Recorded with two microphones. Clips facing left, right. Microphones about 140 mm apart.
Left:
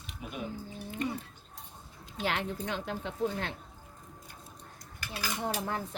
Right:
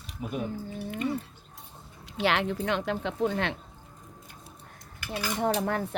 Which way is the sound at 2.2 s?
80° right.